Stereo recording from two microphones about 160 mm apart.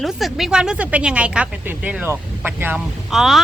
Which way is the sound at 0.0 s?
Centre (ahead or behind).